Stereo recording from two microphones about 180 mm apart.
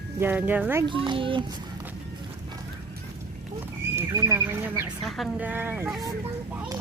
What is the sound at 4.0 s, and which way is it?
Speech, 15° right (ahead or behind).